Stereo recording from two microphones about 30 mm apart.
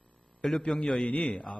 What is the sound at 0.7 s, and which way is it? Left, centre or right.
Speech, left.